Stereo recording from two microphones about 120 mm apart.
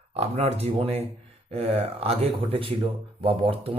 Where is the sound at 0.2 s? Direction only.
60° right (ahead or behind).